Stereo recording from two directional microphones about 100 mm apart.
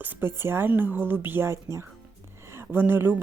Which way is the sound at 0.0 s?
20° right (ahead or behind).